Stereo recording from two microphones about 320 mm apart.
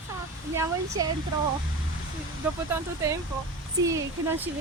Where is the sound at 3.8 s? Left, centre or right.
Centre.